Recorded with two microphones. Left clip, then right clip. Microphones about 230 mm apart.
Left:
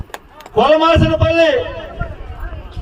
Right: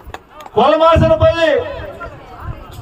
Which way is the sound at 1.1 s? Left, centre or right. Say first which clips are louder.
Even; centre.